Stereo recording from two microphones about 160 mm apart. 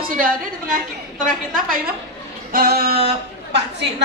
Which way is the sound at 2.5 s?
70° right (ahead or behind).